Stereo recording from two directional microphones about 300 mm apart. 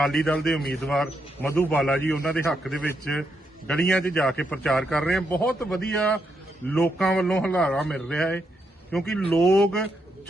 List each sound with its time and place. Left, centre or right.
0.3 s a man's voice: centre